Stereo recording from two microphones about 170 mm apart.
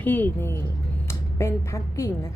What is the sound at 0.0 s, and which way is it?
A woman's voice, 10° left (ahead or behind).